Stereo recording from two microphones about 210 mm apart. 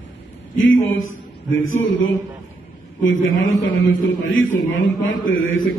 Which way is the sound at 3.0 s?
70° left (ahead or behind).